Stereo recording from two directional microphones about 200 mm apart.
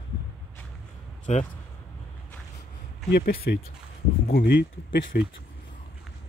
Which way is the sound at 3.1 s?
50° left (ahead or behind).